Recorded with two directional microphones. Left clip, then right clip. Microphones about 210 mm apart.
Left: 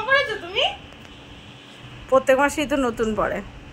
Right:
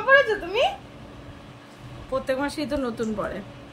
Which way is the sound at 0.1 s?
50° right (ahead or behind).